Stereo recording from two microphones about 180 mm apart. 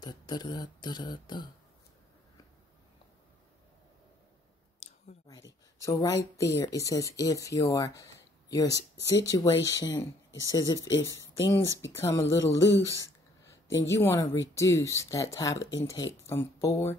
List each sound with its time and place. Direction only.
0.0 s speech: 25° left (ahead or behind)
5.8 s speech: 15° left (ahead or behind)